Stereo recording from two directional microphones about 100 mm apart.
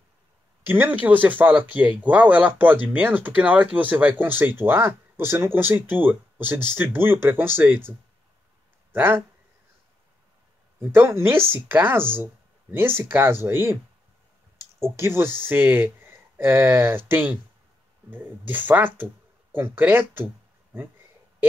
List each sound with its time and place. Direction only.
0.7 s speech: 20° right (ahead or behind)
8.9 s speech: 20° right (ahead or behind)
10.8 s speech: 20° right (ahead or behind)
14.8 s speech: 25° right (ahead or behind)